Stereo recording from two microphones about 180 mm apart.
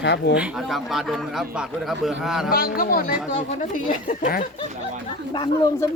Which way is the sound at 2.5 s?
55° left (ahead or behind).